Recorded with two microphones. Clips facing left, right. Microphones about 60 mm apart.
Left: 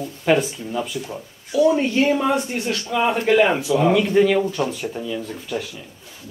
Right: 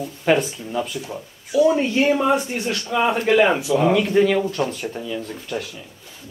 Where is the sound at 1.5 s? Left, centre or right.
Centre.